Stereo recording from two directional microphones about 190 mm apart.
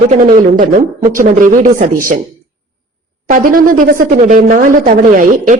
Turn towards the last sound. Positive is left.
turn(degrees=-45)  # may be behind; listen again after turning